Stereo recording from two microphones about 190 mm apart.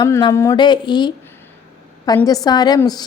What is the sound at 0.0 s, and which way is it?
A woman's voice, 20° left (ahead or behind).